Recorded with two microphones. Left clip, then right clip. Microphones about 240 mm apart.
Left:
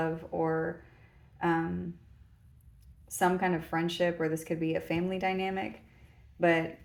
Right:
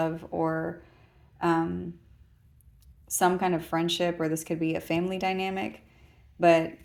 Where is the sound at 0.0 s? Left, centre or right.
Right.